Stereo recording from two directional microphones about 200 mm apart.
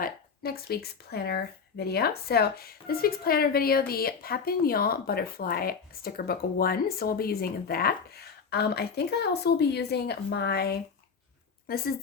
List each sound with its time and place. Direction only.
0.0 s speech: 50° left (ahead or behind)